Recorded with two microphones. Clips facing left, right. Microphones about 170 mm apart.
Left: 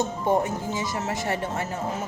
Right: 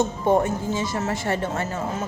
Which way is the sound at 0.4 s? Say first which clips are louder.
Right 3 dB; 15° left (ahead or behind).